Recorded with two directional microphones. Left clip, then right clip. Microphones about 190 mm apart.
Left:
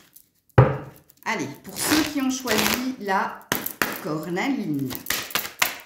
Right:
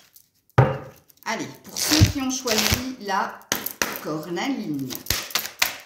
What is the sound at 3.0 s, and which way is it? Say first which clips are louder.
Speech: left 2 dB; 40° left (ahead or behind).